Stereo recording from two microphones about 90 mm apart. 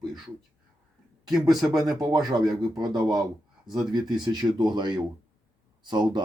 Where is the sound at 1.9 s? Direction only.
45° right (ahead or behind).